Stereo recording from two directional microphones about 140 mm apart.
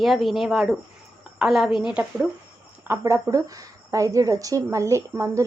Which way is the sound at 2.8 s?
20° right (ahead or behind).